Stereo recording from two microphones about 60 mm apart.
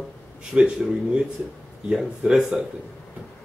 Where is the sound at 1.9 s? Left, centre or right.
Centre.